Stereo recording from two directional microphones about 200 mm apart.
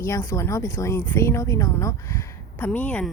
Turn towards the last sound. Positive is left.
turn(degrees=5)  # may be behind; listen again after turning